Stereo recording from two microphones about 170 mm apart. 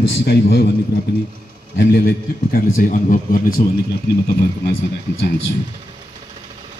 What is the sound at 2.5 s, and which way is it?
A man's voice, 55° left (ahead or behind).